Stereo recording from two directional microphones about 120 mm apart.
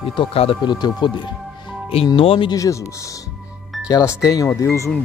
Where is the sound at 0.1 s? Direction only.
50° left (ahead or behind).